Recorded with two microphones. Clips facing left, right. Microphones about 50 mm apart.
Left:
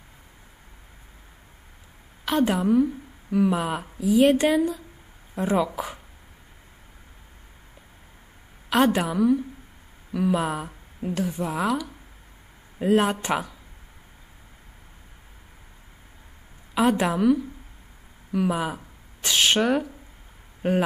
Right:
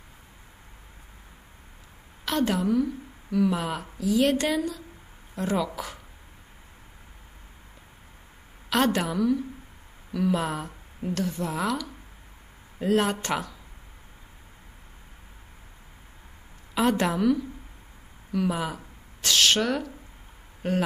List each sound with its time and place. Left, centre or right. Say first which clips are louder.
2.2 s a woman's voice: left 3 dB; centre
8.6 s a woman's voice: left 3 dB; centre
16.7 s a woman's voice: left 2 dB; centre